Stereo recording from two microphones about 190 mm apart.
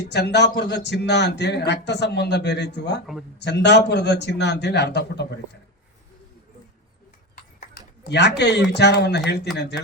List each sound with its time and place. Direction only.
0.0 s speech: 65° left (ahead or behind)
7.7 s speech: 60° left (ahead or behind)